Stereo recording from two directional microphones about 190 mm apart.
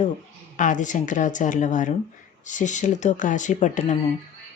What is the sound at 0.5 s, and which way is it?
Speech, 40° left (ahead or behind).